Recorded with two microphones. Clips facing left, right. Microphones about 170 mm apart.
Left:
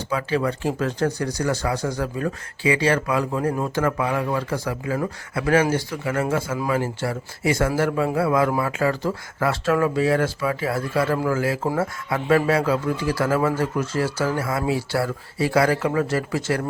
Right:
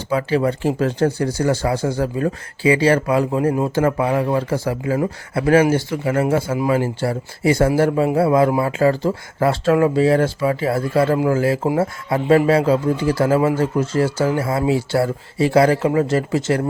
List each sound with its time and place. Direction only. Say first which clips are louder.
0.1 s speech: right 5 dB; 30° right (ahead or behind)